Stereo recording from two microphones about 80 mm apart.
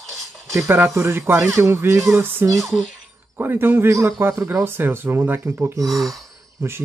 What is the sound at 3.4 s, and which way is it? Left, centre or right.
Speech, right.